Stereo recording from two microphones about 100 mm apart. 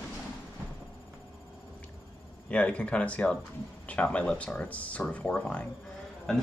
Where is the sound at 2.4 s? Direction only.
10° left (ahead or behind).